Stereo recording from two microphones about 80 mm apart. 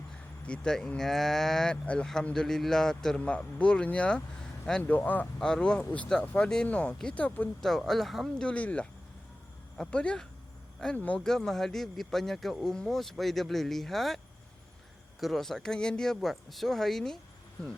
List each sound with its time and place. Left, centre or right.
0.4 s speech: centre
5.4 s speech: centre
7.6 s speech: centre
8.4 s speech: centre
11.3 s speech: centre
15.2 s speech: centre